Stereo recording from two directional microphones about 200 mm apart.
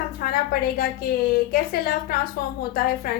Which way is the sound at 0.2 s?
50° left (ahead or behind).